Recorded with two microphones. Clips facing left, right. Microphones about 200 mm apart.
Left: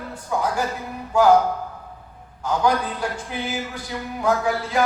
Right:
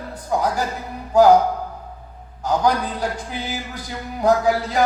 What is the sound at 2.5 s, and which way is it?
A man's voice, 40° right (ahead or behind).